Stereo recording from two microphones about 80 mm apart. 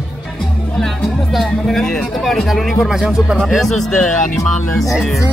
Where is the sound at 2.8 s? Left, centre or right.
Centre.